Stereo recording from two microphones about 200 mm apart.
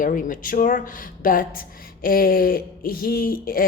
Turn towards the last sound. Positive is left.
turn(degrees=45)  # may be behind; listen again after turning